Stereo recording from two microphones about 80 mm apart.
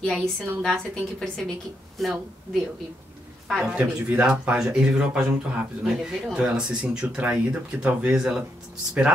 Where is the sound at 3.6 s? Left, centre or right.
Centre.